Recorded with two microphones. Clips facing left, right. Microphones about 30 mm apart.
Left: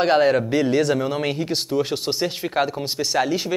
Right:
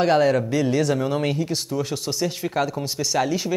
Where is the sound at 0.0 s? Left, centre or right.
Left.